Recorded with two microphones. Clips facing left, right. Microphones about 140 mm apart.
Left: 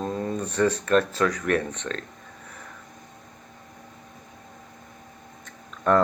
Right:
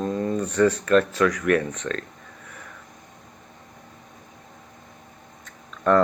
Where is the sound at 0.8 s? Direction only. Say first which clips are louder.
Right 3 dB; 35° left (ahead or behind).